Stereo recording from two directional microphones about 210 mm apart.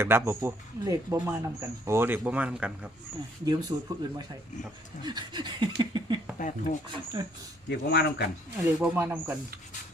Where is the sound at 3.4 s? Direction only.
20° right (ahead or behind).